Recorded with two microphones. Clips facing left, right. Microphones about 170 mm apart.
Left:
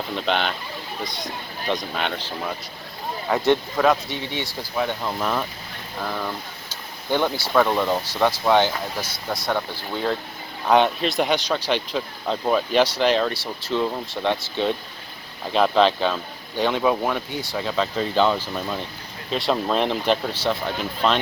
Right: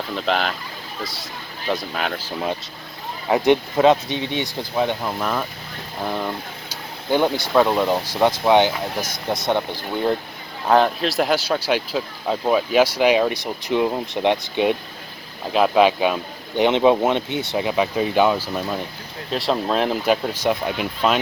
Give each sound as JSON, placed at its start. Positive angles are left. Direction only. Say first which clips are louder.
{"t": 0.2, "sound": "speech", "louder": "right 2 dB", "side_deg": 0}
{"t": 2.0, "sound": "speech", "louder": "right 1 dB", "side_deg": -5}
{"t": 3.2, "sound": "speech", "louder": "right 3 dB", "side_deg": -20}
{"t": 5.0, "sound": "speech", "louder": "right 1 dB", "side_deg": 0}
{"t": 6.0, "sound": "speech", "louder": "right 3 dB", "side_deg": -20}
{"t": 10.7, "sound": "speech", "louder": "right 1 dB", "side_deg": 0}